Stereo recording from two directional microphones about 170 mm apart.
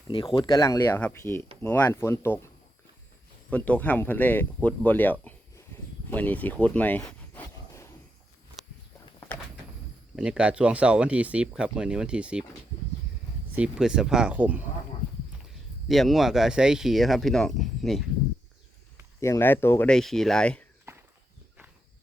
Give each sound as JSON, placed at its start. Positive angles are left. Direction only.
{"t": 0.3, "sound": "speech", "side_deg": 25}
{"t": 0.9, "sound": "speech", "side_deg": 10}
{"t": 3.5, "sound": "speech", "side_deg": 10}
{"t": 7.0, "sound": "a sound", "side_deg": 20}
{"t": 10.2, "sound": "speech", "side_deg": -5}
{"t": 13.6, "sound": "speech", "side_deg": -5}
{"t": 15.9, "sound": "speech", "side_deg": 0}
{"t": 19.2, "sound": "speech", "side_deg": 15}